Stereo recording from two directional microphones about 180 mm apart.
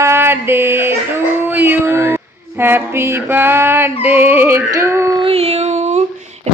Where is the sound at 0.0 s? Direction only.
15° right (ahead or behind).